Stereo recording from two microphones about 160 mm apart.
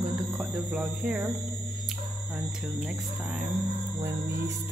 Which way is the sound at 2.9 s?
5° right (ahead or behind).